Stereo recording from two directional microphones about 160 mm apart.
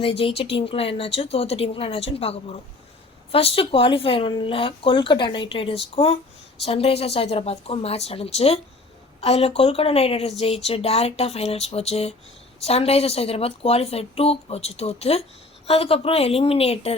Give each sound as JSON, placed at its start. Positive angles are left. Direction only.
{"t": 0.0, "sound": "a woman's voice", "side_deg": 35}